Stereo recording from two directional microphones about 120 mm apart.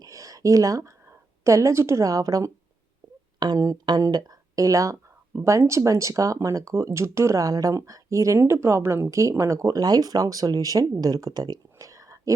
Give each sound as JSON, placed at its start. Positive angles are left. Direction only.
{"t": 0.0, "sound": "a woman's voice", "side_deg": -30}